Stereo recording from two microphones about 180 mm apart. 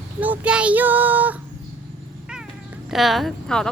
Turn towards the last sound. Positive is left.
turn(degrees=5)  # may be behind; listen again after turning